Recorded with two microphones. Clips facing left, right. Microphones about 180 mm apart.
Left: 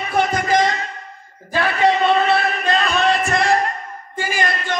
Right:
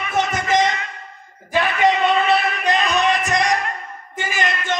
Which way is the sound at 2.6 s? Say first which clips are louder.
Even; 20° right (ahead or behind).